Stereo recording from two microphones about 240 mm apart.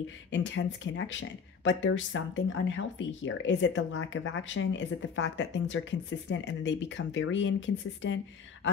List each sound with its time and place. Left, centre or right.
0.3 s speech: left